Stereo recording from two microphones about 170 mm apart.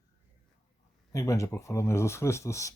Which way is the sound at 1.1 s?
20° left (ahead or behind).